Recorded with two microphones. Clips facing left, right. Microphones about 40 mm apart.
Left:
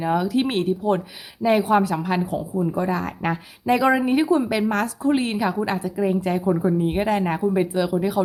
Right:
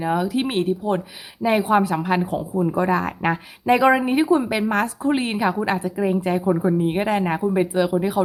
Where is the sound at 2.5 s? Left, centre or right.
Right.